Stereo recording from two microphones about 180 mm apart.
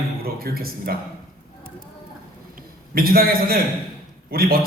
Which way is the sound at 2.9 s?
55° right (ahead or behind).